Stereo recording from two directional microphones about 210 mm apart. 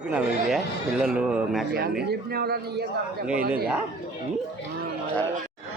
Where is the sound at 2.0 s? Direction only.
50° right (ahead or behind).